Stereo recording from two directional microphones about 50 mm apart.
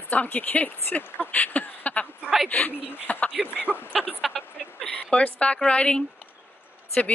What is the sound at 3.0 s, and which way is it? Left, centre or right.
Speech, left.